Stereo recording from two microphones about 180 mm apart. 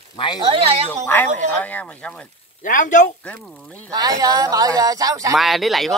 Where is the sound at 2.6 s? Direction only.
45° left (ahead or behind).